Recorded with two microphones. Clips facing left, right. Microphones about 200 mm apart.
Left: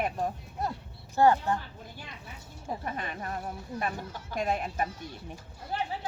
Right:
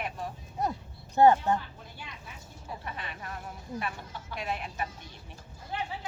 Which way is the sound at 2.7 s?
45° left (ahead or behind).